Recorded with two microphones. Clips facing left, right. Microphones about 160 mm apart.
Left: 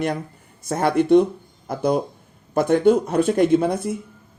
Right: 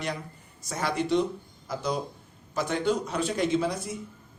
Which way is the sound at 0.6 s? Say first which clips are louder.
Left 10 dB; 55° left (ahead or behind).